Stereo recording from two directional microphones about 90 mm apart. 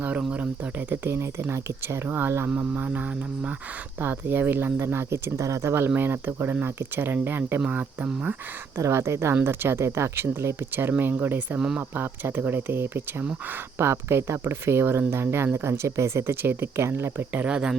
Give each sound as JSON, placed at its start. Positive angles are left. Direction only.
{"t": 0.2, "sound": "speech", "side_deg": -10}
{"t": 0.9, "sound": "speech", "side_deg": -25}
{"t": 7.6, "sound": "speech", "side_deg": -15}
{"t": 8.8, "sound": "speech", "side_deg": -30}